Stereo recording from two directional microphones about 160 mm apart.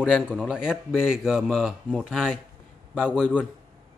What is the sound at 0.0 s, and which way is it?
Speech, 5° right (ahead or behind).